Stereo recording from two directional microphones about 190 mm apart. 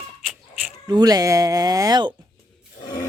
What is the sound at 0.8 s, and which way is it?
Speech, 20° right (ahead or behind).